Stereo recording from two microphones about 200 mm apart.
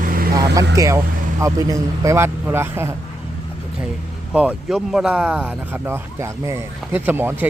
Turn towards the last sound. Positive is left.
turn(degrees=-10)  # may be behind; listen again after turning